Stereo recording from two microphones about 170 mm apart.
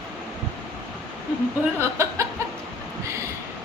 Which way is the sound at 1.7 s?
15° right (ahead or behind).